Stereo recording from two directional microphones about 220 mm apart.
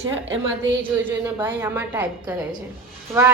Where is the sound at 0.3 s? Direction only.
55° right (ahead or behind).